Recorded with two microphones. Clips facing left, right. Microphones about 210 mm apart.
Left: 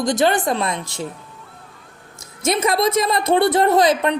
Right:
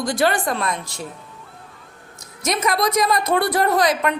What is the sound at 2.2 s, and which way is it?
A woman's voice, 25° left (ahead or behind).